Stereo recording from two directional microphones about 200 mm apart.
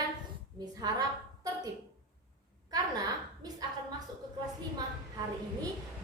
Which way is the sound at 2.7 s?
20° right (ahead or behind).